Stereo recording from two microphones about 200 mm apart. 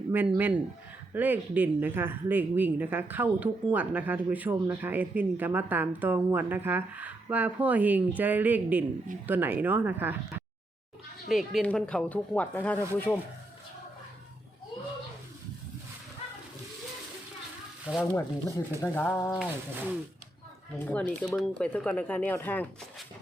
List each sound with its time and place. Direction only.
0.1 s speech: 10° right (ahead or behind); by 12.8 s 10° left (ahead or behind)
17.9 s speech: 5° left (ahead or behind)
19.4 s speech: 5° right (ahead or behind)
20.7 s speech: 5° left (ahead or behind)